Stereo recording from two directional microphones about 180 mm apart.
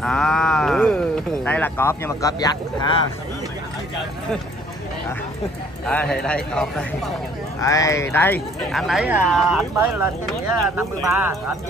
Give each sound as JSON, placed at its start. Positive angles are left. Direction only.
{"t": 0.0, "sound": "speech", "side_deg": 5}
{"t": 5.9, "sound": "speech", "side_deg": 5}
{"t": 7.6, "sound": "speech", "side_deg": 20}
{"t": 8.7, "sound": "speech", "side_deg": 0}
{"t": 10.6, "sound": "speech", "side_deg": -15}